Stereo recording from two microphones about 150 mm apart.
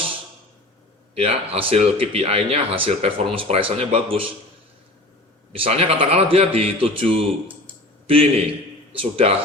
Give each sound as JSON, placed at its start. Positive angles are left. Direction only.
{"t": 1.1, "sound": "speech", "side_deg": -40}
{"t": 5.5, "sound": "a man's voice", "side_deg": -40}